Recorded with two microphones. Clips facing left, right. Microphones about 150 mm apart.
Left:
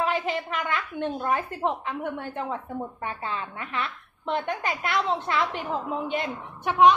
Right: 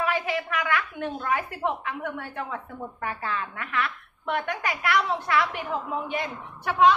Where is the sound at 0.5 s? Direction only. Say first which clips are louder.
Right 2 dB; 25° left (ahead or behind).